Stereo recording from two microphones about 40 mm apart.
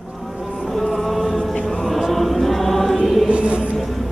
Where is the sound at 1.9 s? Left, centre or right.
Centre.